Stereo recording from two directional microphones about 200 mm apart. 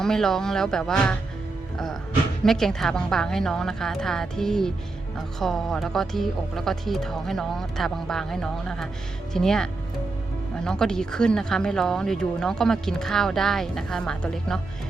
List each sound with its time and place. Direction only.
0.0 s speech: 5° left (ahead or behind)
2.4 s speech: centre (ahead or behind)